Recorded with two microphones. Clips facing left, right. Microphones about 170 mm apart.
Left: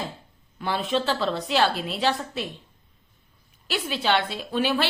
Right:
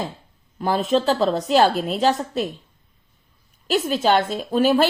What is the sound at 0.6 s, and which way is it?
A woman's voice, 40° right (ahead or behind).